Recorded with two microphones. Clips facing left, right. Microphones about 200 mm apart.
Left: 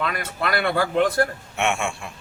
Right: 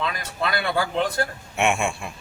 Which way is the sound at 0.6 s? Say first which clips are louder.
Left 5 dB; 60° left (ahead or behind).